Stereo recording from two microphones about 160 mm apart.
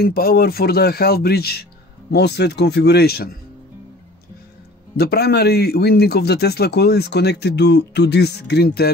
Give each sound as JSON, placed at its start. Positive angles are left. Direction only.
{"t": 0.0, "sound": "speech", "side_deg": 70}
{"t": 2.1, "sound": "speech", "side_deg": 90}
{"t": 4.9, "sound": "speech", "side_deg": 80}